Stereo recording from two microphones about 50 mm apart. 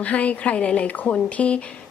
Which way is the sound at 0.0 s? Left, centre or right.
Left.